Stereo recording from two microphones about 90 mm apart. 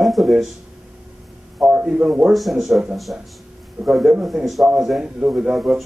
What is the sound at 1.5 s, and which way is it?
Speech, 15° right (ahead or behind).